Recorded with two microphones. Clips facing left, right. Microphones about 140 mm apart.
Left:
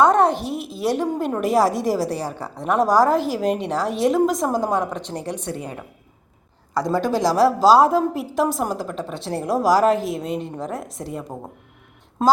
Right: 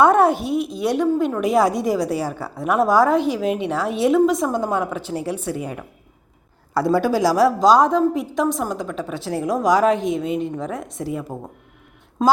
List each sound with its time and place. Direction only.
0.0 s a woman's voice: 5° right (ahead or behind)
6.7 s a woman's voice: 15° left (ahead or behind)
7.0 s a woman's voice: 5° right (ahead or behind)